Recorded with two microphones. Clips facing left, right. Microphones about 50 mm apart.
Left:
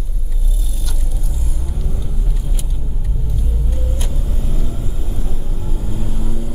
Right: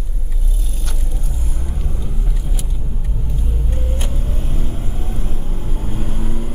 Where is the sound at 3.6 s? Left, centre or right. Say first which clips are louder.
Right 1 dB; right.